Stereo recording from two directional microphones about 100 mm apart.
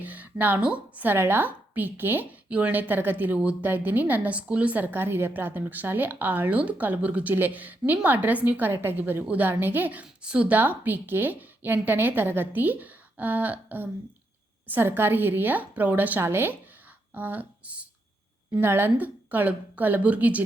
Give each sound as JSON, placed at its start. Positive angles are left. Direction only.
{"t": 0.0, "sound": "a woman's voice", "side_deg": -15}